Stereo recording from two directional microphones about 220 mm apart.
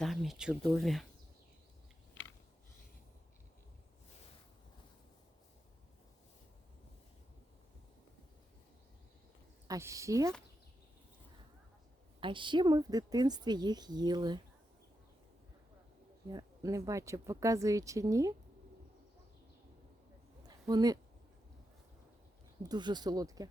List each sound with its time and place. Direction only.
0.0 s speech: centre (ahead or behind)
9.6 s speech: 15° right (ahead or behind)
12.2 s a woman's voice: 20° right (ahead or behind)
16.3 s speech: 15° right (ahead or behind)
20.7 s speech: 15° right (ahead or behind)
22.6 s speech: 20° right (ahead or behind)